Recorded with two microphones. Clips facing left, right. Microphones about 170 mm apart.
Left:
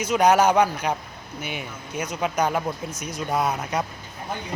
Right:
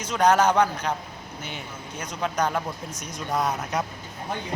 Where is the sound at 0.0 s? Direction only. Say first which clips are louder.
Left 2 dB; 10° left (ahead or behind).